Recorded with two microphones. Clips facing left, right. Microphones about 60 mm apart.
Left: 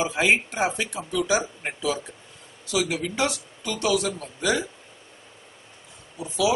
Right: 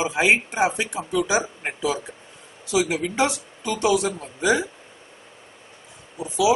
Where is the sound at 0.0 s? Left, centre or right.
Centre.